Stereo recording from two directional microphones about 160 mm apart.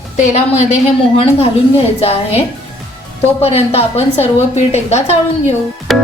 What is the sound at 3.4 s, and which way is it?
A woman's voice, 40° left (ahead or behind).